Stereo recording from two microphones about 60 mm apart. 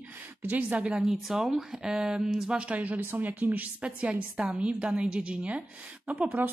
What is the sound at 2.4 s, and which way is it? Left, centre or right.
A woman's voice, centre.